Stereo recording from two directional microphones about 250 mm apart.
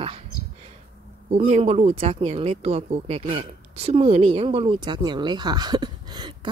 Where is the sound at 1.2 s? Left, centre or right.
Right.